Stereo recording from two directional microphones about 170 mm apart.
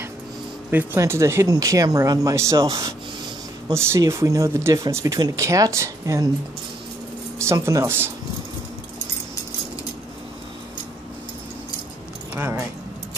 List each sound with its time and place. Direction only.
0.7 s speech: 15° right (ahead or behind)
7.3 s speech: 15° right (ahead or behind)
12.4 s speech: 15° right (ahead or behind)